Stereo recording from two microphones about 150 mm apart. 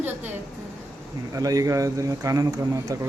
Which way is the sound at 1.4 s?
25° right (ahead or behind).